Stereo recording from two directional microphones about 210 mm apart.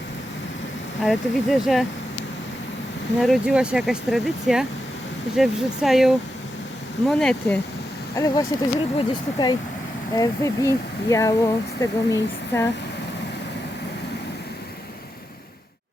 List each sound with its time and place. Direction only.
1.0 s speech: centre (ahead or behind)
3.2 s speech: centre (ahead or behind)
8.1 s speech: 15° left (ahead or behind)